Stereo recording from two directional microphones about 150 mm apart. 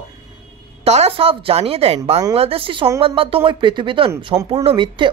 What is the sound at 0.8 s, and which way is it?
Speech, 45° right (ahead or behind).